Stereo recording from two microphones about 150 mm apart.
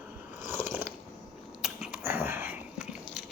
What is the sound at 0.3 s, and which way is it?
Biting, 15° right (ahead or behind).